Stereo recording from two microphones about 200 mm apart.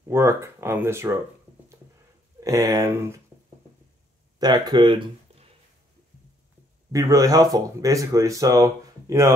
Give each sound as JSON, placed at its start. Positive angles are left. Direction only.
{"t": 0.1, "sound": "speech", "side_deg": -15}
{"t": 2.4, "sound": "speech", "side_deg": -15}
{"t": 4.4, "sound": "speech", "side_deg": -20}
{"t": 6.9, "sound": "speech", "side_deg": -15}